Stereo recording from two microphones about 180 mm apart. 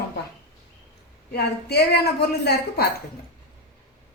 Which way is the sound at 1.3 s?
65° left (ahead or behind).